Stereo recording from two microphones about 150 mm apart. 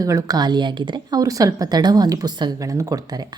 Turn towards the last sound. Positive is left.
turn(degrees=-25)  # may be behind; listen again after turning